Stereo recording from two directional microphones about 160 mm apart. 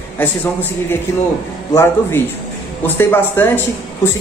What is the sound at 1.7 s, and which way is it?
Speech, 15° left (ahead or behind).